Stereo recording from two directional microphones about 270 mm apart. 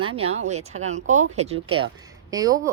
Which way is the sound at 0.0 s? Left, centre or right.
Centre.